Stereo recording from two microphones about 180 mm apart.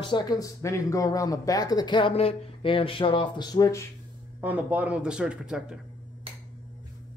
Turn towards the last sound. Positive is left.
turn(degrees=-5)  # may be behind; listen again after turning